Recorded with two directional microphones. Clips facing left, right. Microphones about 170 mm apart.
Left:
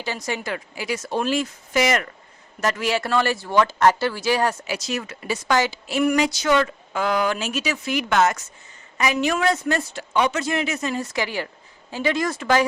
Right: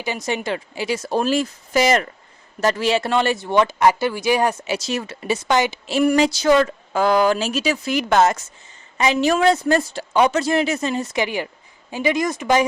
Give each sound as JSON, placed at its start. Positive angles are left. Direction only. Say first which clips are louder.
{"t": 0.0, "sound": "a woman's voice", "louder": "right 4 dB", "side_deg": -20}